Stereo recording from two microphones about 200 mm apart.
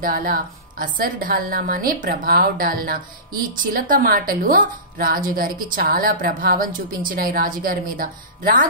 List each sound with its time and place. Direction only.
0.0 s a woman's voice: 45° right (ahead or behind)